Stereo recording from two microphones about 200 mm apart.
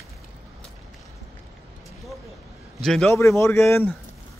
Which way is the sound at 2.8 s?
5° left (ahead or behind).